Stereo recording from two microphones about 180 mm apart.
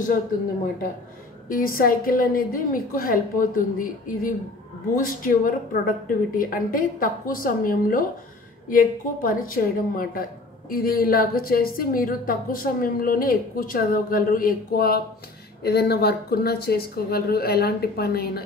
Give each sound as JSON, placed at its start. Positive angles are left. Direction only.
{"t": 1.5, "sound": "a woman's voice", "side_deg": 55}